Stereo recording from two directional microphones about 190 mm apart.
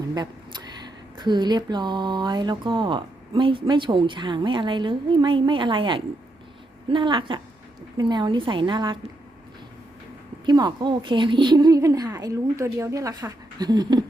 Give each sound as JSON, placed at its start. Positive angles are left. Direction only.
{"t": 0.1, "sound": "a sound", "side_deg": -20}
{"t": 1.2, "sound": "speech", "side_deg": -25}
{"t": 10.4, "sound": "speech", "side_deg": -25}